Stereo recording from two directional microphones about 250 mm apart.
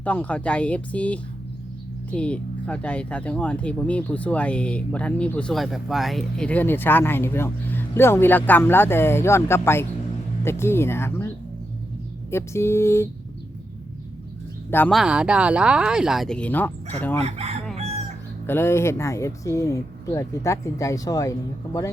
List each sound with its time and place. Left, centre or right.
0.0 s speech: centre
12.3 s speech: centre
14.7 s speech: centre
17.2 s chicken: right
18.4 s speech: centre